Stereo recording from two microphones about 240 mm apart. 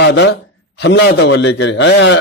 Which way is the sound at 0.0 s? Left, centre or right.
Left.